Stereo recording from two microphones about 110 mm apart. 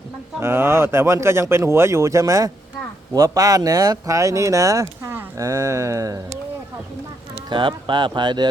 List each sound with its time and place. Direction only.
0.3 s speech: 20° right (ahead or behind)
7.5 s speech: 45° right (ahead or behind)